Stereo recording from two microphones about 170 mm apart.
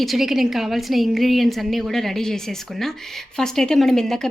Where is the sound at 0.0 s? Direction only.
Centre (ahead or behind).